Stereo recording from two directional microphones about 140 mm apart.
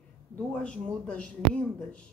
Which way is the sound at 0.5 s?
10° left (ahead or behind).